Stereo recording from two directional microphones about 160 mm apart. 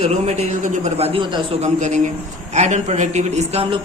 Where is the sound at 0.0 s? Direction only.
45° right (ahead or behind).